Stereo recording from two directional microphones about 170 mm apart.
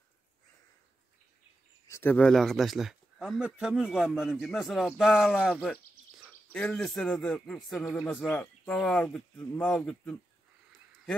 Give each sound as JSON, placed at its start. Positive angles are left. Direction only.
{"t": 1.9, "sound": "speech", "side_deg": 10}